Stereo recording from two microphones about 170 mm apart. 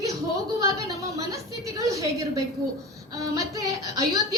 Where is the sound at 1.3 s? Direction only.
20° right (ahead or behind).